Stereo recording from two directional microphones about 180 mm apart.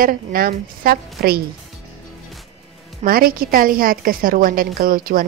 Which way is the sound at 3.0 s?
55° right (ahead or behind).